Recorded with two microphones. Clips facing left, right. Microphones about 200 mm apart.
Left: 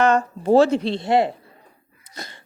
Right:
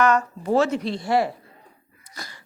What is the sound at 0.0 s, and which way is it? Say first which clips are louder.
Speech: left 2 dB; 30° left (ahead or behind).